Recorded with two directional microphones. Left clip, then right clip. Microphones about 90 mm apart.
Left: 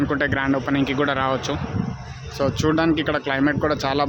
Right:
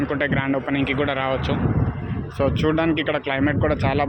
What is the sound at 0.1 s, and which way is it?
Speech, 50° left (ahead or behind).